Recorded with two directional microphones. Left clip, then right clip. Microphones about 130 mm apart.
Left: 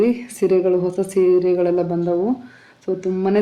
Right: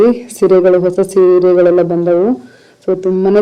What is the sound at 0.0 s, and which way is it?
Speech, 25° right (ahead or behind).